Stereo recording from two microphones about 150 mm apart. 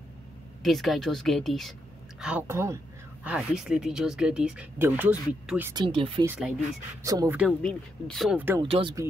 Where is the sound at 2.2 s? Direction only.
15° right (ahead or behind).